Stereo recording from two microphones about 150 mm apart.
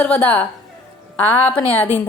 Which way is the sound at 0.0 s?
10° left (ahead or behind).